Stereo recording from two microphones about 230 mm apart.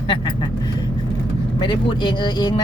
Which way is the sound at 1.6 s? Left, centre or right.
Left.